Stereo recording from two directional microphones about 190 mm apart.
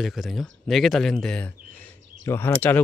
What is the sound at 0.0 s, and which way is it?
Speech, centre (ahead or behind).